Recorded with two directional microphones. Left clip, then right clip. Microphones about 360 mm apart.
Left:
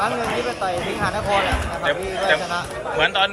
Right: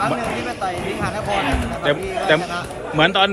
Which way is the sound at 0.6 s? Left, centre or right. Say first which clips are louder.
Left 1 dB; centre.